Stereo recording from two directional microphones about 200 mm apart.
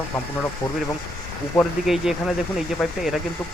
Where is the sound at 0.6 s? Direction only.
15° left (ahead or behind).